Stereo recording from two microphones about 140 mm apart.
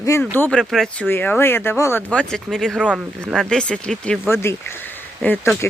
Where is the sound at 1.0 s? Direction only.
10° left (ahead or behind).